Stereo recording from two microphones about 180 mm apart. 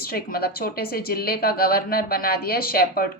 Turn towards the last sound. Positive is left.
turn(degrees=55)  # may be behind; listen again after turning